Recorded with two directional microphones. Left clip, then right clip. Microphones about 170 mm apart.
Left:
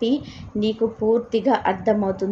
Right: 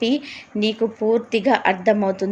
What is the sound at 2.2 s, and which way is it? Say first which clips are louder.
Speech: right 1 dB; 25° right (ahead or behind).